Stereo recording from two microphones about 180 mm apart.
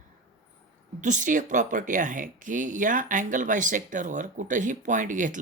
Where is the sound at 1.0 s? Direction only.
45° right (ahead or behind).